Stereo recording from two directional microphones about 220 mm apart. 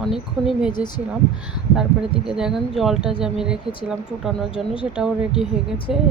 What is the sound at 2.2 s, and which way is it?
A woman's voice, centre (ahead or behind).